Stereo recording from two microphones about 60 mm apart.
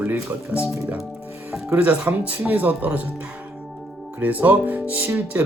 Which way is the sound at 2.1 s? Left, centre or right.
Right.